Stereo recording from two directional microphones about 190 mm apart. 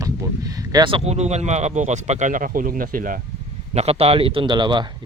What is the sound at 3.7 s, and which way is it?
Speech, 30° right (ahead or behind).